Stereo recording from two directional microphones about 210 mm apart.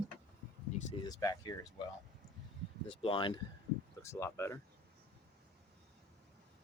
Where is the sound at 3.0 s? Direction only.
25° left (ahead or behind).